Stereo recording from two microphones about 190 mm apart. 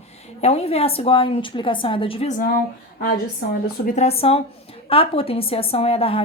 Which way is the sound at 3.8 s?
35° left (ahead or behind).